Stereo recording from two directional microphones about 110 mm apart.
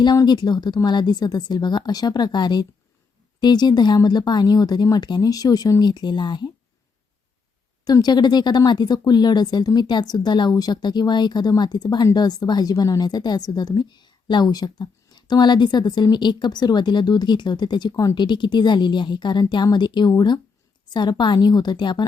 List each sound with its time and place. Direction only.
0.0 s a woman's voice: 40° left (ahead or behind)
7.9 s a woman's voice: 35° left (ahead or behind)